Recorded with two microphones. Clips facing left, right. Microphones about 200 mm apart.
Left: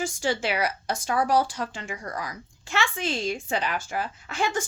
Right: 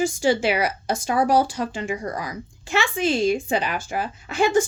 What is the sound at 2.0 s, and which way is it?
Speech, 25° right (ahead or behind).